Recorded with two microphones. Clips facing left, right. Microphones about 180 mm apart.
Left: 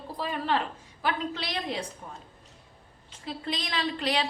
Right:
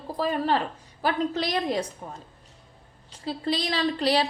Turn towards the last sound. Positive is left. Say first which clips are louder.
# right 5 dB
turn(degrees=-35)  # may be behind; listen again after turning